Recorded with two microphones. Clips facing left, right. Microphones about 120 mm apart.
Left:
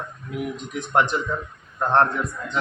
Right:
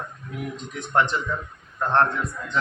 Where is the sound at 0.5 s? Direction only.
15° left (ahead or behind).